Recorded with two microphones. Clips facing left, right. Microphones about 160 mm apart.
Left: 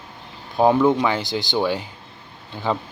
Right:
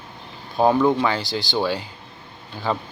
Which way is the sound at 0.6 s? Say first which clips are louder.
Left 1 dB; 10° left (ahead or behind).